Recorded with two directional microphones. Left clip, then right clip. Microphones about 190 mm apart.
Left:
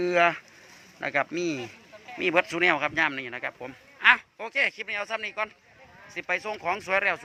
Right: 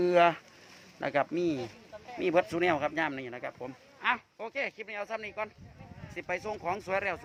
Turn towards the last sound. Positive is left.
turn(degrees=0)  # may be behind; listen again after turning